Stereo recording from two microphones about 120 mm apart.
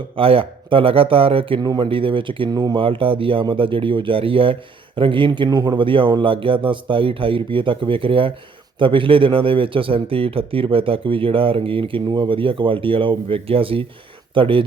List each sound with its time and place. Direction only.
0.2 s speech: 50° right (ahead or behind)